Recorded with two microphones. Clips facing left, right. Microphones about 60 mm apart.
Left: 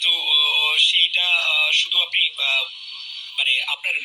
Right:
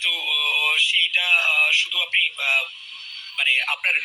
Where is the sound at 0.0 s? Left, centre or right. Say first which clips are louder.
Left 2 dB; right.